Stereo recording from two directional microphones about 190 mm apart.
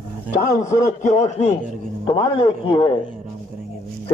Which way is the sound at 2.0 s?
25° left (ahead or behind).